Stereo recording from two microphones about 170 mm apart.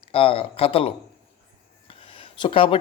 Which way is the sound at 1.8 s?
30° left (ahead or behind).